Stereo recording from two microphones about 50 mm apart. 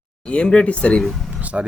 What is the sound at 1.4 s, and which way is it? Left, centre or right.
Speech, right.